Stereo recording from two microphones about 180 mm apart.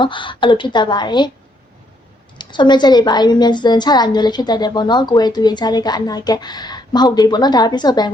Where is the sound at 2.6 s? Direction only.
25° left (ahead or behind).